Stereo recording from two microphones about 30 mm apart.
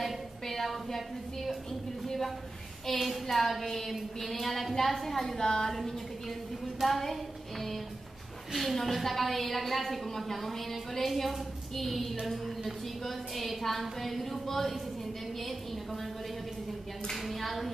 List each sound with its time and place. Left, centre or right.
0.0 s a sound: centre
2.9 s a woman's voice: centre
5.4 s a woman's voice: left
5.7 s a sound: centre
6.8 s a woman's voice: centre
8.5 s a woman's voice: centre
17.2 s a woman's voice: centre